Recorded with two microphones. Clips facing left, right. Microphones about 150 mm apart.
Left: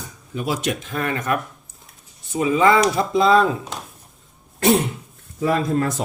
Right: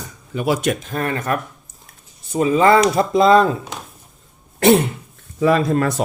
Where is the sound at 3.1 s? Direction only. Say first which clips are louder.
Right 3 dB; centre (ahead or behind).